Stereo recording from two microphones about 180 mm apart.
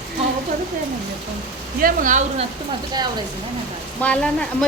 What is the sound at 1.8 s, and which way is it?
Speech, 50° right (ahead or behind).